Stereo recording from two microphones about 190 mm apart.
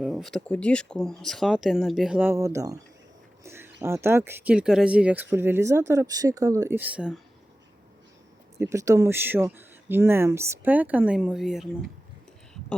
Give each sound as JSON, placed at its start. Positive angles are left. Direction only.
{"t": 0.0, "sound": "speech", "side_deg": 0}
{"t": 8.5, "sound": "speech", "side_deg": -15}